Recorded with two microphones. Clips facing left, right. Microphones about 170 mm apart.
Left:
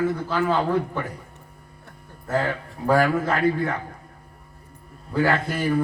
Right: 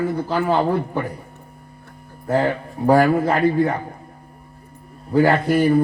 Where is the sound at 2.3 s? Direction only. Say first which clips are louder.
Right 5 dB; 35° right (ahead or behind).